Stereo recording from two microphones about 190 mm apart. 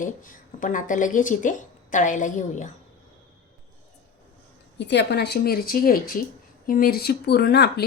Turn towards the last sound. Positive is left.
turn(degrees=60)  # may be behind; listen again after turning